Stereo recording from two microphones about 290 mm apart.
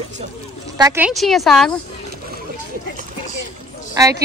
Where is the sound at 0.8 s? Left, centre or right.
Centre.